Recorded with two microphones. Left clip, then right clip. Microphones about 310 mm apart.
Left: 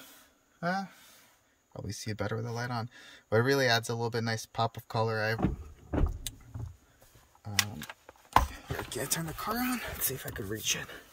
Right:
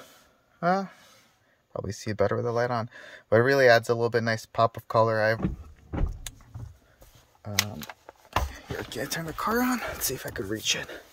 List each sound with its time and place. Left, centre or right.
0.6 s speech: centre
7.5 s speech: right
8.8 s speech: centre
9.6 s speech: centre